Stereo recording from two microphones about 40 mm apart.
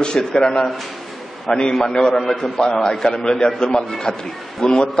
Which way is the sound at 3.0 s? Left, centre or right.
Left.